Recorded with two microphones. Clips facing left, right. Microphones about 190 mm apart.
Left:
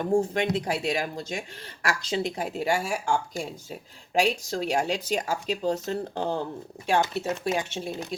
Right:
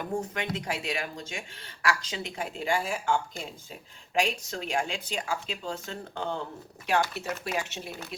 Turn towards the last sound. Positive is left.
turn(degrees=30)  # may be behind; listen again after turning